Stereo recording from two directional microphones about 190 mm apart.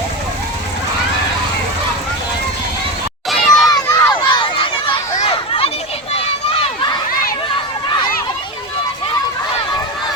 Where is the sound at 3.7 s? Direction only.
25° left (ahead or behind).